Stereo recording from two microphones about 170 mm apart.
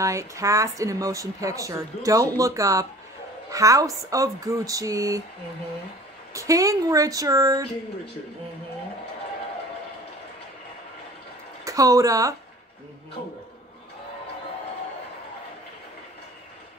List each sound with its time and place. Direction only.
0.0 s speech: 20° right (ahead or behind)
6.3 s speech: 20° right (ahead or behind)
11.6 s speech: 20° right (ahead or behind)